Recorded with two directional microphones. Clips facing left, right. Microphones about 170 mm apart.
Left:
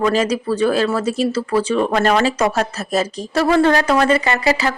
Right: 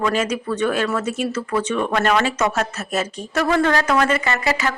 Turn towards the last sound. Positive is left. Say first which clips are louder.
# left 4 dB
turn(degrees=35)  # may be behind; listen again after turning